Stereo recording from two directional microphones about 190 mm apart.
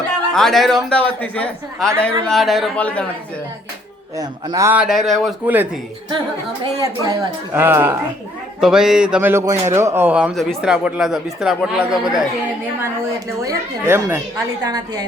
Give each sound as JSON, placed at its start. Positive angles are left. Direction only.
{"t": 0.3, "sound": "a man's voice", "side_deg": 0}
{"t": 4.2, "sound": "a man's voice", "side_deg": -20}
{"t": 6.6, "sound": "a man's voice", "side_deg": -20}
{"t": 13.4, "sound": "a man's voice", "side_deg": -15}